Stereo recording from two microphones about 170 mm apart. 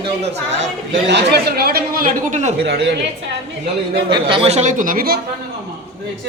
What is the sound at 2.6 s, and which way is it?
Speech, 80° right.